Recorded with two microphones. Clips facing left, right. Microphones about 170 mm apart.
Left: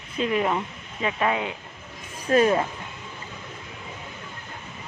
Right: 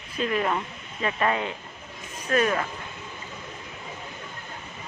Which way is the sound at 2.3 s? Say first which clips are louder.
Left 4 dB; 30° left (ahead or behind).